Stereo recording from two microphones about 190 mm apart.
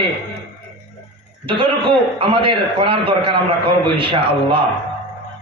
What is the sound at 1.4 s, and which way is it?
A man's voice, 25° right (ahead or behind).